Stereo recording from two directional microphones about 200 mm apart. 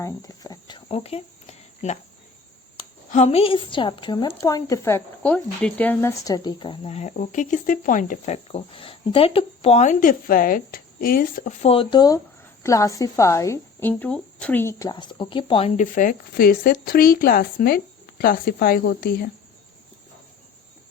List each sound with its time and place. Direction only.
0.0 s cricket: 20° left (ahead or behind); by 2.0 s 35° left (ahead or behind)
3.1 s a woman's voice: 35° left (ahead or behind)